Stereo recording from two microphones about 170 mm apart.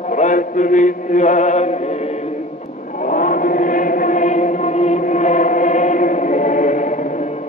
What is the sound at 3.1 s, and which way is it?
Chant, 50° left (ahead or behind).